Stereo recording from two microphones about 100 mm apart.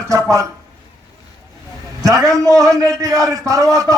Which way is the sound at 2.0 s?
35° right (ahead or behind).